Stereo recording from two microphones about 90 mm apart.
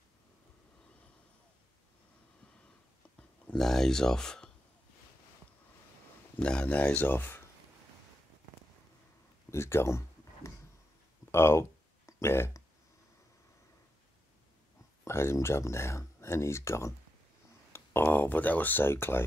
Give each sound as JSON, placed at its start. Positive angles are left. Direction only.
{"t": 3.5, "sound": "speech", "side_deg": 5}
{"t": 6.4, "sound": "speech", "side_deg": 10}
{"t": 9.5, "sound": "a sound", "side_deg": 30}
{"t": 11.3, "sound": "speech", "side_deg": 30}
{"t": 15.0, "sound": "speech", "side_deg": 30}